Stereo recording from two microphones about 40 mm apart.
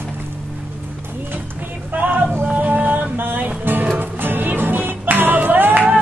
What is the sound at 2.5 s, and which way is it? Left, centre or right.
Music, right.